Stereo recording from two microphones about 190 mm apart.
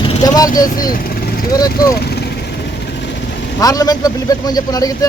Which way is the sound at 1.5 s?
20° left (ahead or behind).